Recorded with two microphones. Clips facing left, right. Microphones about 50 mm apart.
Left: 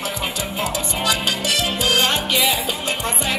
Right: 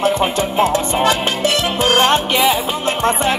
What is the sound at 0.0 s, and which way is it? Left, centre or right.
Music, right.